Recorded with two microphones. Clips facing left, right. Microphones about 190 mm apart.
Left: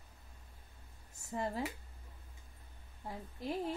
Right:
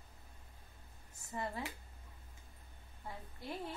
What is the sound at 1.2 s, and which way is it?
Speech, 45° left (ahead or behind).